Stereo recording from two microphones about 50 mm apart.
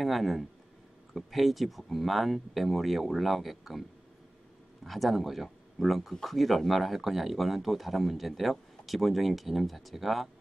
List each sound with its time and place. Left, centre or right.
0.0 s speech: centre
4.8 s speech: centre